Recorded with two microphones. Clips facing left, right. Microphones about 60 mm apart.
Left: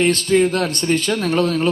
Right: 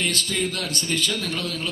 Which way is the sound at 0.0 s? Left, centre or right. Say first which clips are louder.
Left 11 dB; left.